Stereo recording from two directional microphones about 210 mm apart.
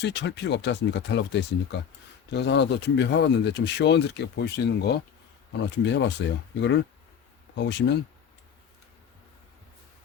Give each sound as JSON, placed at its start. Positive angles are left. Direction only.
{"t": 0.0, "sound": "speech", "side_deg": 55}